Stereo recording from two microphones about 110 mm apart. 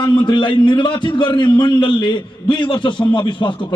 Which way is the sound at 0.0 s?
50° left (ahead or behind).